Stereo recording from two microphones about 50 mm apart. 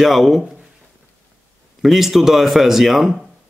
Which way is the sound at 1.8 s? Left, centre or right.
Centre.